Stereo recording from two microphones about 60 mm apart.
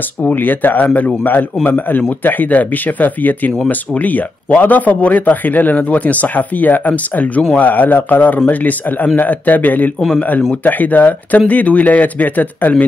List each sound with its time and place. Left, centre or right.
0.3 s a man's voice: left